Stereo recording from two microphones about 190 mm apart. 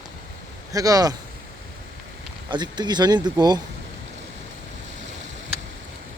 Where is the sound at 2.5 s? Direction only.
20° right (ahead or behind).